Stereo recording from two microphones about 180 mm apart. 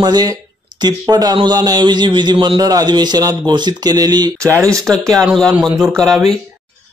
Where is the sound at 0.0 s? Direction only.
20° right (ahead or behind).